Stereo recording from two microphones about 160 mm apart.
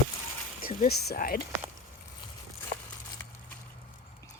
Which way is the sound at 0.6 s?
70° left (ahead or behind).